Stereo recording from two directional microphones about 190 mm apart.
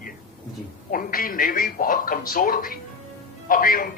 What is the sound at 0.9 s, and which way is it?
A man's voice, 50° left (ahead or behind).